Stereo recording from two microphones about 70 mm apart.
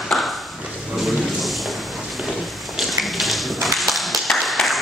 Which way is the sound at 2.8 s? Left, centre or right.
Centre.